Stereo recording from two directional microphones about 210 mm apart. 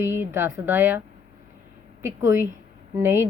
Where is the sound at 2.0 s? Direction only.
15° right (ahead or behind).